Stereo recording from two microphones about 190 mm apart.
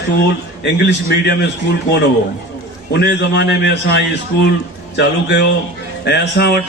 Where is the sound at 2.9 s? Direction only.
65° left (ahead or behind).